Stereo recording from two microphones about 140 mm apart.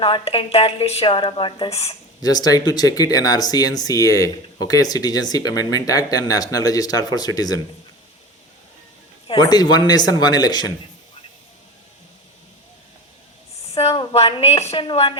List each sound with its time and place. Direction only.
0.0 s a woman's voice: 40° left (ahead or behind)
2.2 s speech: 30° left (ahead or behind)
9.2 s speech: 35° left (ahead or behind)
13.7 s a woman's voice: 45° left (ahead or behind)